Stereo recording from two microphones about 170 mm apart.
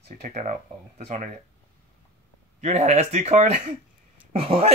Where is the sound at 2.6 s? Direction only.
40° right (ahead or behind).